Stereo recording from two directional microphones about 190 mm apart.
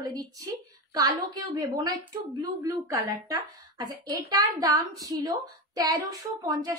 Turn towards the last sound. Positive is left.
turn(degrees=-20)  # may be behind; listen again after turning